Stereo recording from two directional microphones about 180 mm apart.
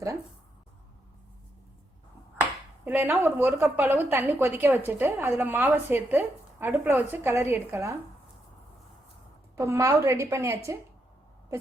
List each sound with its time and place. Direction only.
2.4 s speech: 10° right (ahead or behind)
9.6 s speech: 15° right (ahead or behind)